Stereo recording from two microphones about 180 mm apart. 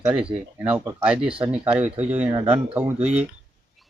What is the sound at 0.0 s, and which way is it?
A man's voice, 5° right (ahead or behind).